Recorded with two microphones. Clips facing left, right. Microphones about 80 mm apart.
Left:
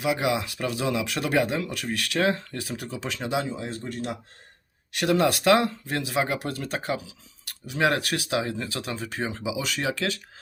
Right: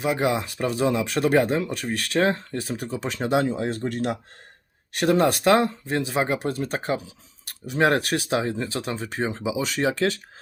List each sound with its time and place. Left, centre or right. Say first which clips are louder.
0.0 s speech: right 2 dB; right
3.3 s speech: right 7 dB; right
4.9 s speech: right 2 dB; right